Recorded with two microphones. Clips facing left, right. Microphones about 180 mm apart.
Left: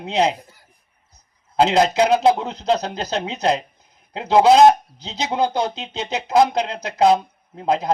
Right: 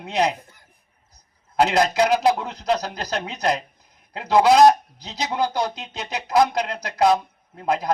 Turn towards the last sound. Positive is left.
turn(degrees=25)  # may be behind; listen again after turning